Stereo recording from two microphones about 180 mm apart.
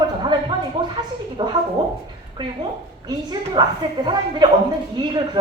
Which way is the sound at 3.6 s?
25° right (ahead or behind).